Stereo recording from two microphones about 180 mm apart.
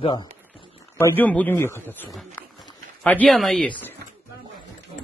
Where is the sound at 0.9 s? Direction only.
10° left (ahead or behind).